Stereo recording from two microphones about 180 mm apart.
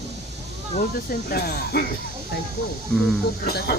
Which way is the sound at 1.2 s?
65° left (ahead or behind).